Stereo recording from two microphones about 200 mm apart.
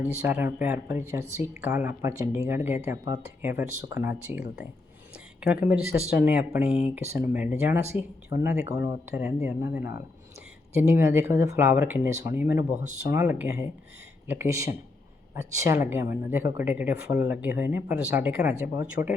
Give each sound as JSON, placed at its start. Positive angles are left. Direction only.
{"t": 0.0, "sound": "speech", "side_deg": -10}
{"t": 8.7, "sound": "speech", "side_deg": 50}
{"t": 9.2, "sound": "speech", "side_deg": -15}